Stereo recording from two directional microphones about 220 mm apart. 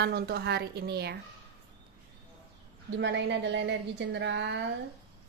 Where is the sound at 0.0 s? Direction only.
50° right (ahead or behind).